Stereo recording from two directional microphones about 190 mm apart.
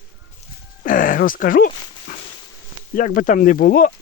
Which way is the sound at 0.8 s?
45° left (ahead or behind).